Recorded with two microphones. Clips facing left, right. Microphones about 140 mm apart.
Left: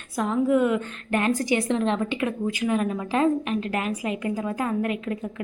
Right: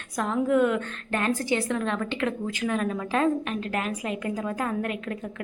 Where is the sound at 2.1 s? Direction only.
10° left (ahead or behind).